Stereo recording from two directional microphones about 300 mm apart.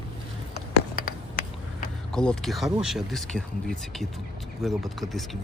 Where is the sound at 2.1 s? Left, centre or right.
Centre.